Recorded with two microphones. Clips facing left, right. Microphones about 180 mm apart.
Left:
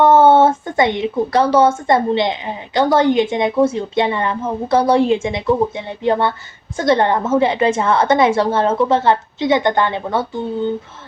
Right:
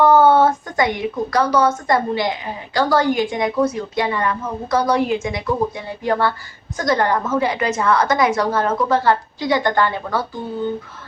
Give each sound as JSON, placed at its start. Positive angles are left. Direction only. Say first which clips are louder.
{"t": 0.0, "sound": "speech", "louder": "left 2 dB", "side_deg": 25}